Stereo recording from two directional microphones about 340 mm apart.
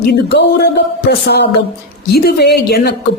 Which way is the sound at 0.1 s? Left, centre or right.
Left.